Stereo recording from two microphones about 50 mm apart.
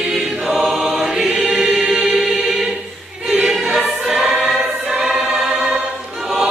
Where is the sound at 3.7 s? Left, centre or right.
Centre.